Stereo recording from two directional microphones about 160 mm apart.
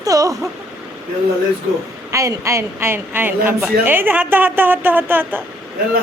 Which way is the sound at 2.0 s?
20° right (ahead or behind).